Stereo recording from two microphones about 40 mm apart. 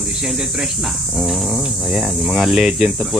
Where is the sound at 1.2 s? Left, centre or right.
Centre.